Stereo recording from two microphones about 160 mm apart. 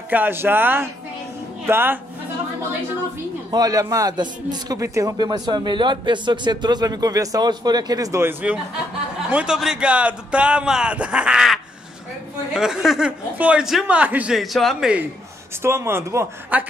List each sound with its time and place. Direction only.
0.1 s speech: 10° right (ahead or behind)
3.5 s a man's voice: 20° right (ahead or behind); by 15.0 s 5° right (ahead or behind)
15.6 s speech: 15° right (ahead or behind)